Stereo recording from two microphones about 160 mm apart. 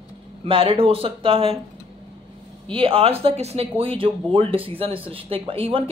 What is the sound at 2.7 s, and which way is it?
A woman's voice, 35° right (ahead or behind).